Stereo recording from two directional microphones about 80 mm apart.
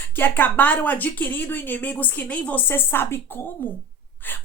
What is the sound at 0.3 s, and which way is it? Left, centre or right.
A woman's voice, left.